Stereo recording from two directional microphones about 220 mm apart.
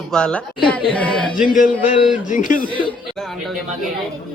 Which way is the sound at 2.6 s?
25° left (ahead or behind).